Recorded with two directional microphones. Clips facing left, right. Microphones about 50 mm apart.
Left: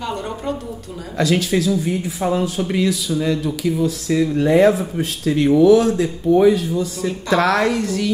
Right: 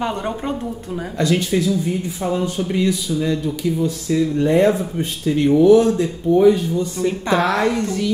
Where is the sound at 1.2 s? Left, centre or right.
Left.